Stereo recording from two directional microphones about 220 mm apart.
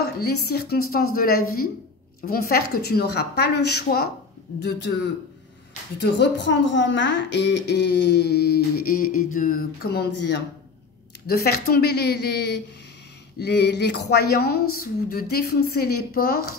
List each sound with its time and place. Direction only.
0.5 s a woman's voice: 45° left (ahead or behind)
5.9 s a woman's voice: 55° left (ahead or behind)